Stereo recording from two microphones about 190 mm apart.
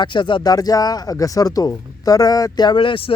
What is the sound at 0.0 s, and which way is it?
Speech, 25° left (ahead or behind).